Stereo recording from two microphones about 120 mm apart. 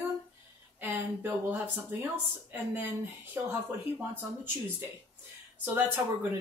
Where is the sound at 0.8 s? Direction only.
15° right (ahead or behind).